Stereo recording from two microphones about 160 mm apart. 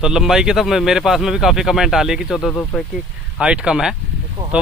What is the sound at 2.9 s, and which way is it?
Speech, 5° right (ahead or behind).